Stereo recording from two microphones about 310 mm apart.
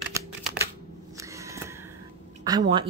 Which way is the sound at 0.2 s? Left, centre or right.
Centre.